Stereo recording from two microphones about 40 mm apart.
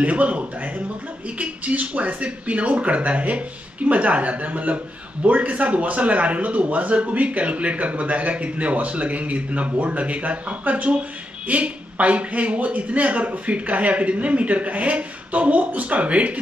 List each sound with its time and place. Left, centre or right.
0.0 s speech: right